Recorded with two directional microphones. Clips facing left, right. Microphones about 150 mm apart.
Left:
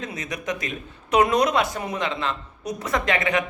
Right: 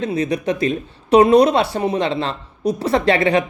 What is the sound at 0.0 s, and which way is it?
Speech, 30° right (ahead or behind).